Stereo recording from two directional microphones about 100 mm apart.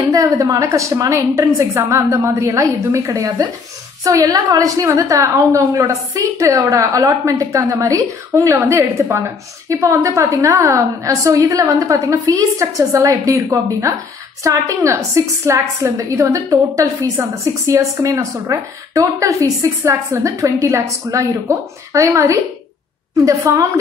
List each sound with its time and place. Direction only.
0.1 s a woman's voice: 35° right (ahead or behind)